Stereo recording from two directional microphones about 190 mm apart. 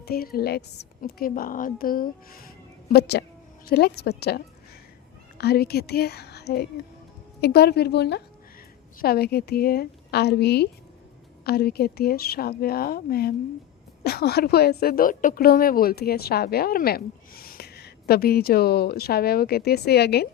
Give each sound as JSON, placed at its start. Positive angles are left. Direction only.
{"t": 0.0, "sound": "a woman's voice", "side_deg": 50}
{"t": 2.9, "sound": "a woman's voice", "side_deg": 60}